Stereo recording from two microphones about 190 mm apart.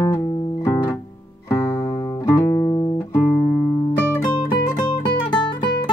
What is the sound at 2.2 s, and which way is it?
Music, 15° left (ahead or behind).